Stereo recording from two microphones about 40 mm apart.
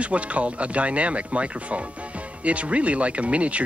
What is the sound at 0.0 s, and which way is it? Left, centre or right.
Speech, right.